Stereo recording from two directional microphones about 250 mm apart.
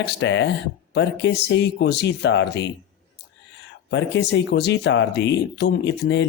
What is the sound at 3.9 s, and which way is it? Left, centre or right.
Speech, left.